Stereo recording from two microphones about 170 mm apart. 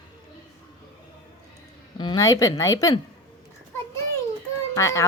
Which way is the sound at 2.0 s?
25° left (ahead or behind).